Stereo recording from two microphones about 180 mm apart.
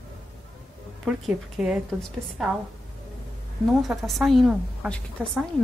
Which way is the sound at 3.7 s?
Centre (ahead or behind).